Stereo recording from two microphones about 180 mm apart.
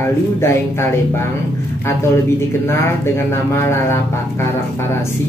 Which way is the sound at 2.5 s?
15° left (ahead or behind).